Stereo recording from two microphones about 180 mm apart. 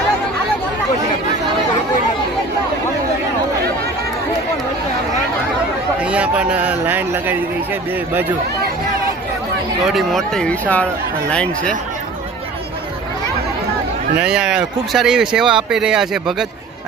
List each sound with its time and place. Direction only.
6.0 s speech: 5° right (ahead or behind)
9.8 s speech: centre (ahead or behind)
14.2 s speech: 5° right (ahead or behind)